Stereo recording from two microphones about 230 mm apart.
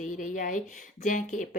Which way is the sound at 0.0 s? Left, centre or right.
Left.